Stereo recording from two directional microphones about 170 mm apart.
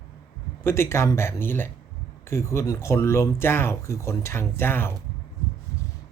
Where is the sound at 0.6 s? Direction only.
15° left (ahead or behind).